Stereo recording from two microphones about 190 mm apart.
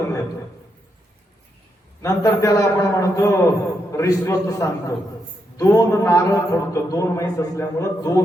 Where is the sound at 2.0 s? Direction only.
15° left (ahead or behind).